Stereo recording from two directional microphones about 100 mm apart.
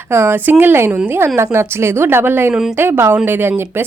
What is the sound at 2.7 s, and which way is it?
Speech, 20° right (ahead or behind).